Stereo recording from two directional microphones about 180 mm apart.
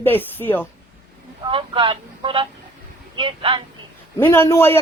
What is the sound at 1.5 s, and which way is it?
Speech, 30° right (ahead or behind).